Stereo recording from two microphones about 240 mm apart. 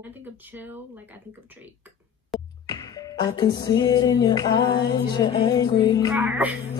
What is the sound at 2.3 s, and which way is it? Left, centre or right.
Music, centre.